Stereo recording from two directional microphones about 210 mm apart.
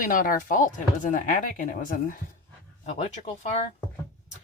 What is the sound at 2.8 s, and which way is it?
Speech, 30° left (ahead or behind).